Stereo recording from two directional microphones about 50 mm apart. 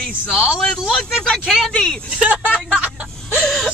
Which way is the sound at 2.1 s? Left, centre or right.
Right.